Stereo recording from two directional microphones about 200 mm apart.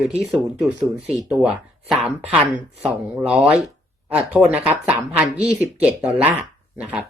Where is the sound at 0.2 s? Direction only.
5° right (ahead or behind).